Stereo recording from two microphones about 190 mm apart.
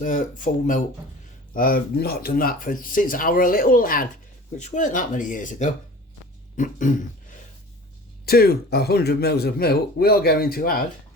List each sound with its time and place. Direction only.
0.0 s speech: 45° left (ahead or behind)
6.6 s a sound: 45° left (ahead or behind)
8.3 s a man's voice: 55° left (ahead or behind)